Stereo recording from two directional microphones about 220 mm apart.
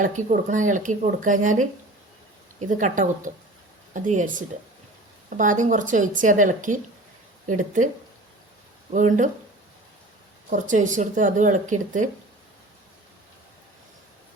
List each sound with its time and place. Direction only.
0.0 s speech: 35° right (ahead or behind)
8.9 s speech: 35° right (ahead or behind)
10.5 s speech: 35° right (ahead or behind)